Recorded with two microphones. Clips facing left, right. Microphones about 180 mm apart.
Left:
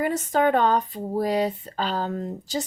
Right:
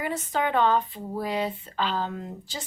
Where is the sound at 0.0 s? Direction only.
45° left (ahead or behind).